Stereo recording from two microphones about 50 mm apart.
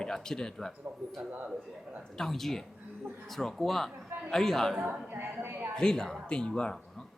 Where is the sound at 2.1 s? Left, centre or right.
Centre.